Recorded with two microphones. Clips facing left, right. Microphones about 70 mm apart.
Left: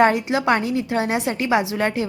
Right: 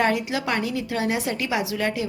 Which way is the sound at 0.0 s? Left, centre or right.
Left.